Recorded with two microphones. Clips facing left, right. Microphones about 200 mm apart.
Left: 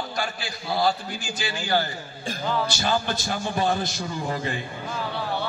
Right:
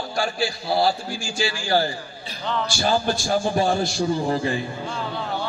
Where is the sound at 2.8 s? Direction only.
30° right (ahead or behind).